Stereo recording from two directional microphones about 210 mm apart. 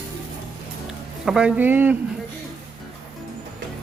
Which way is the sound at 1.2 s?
5° right (ahead or behind).